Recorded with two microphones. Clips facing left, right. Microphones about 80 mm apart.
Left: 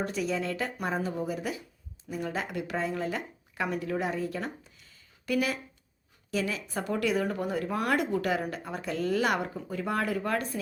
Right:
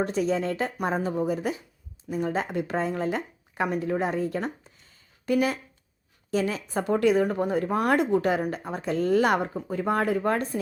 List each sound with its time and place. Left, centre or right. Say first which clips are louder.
0.0 s speech: right 5 dB; right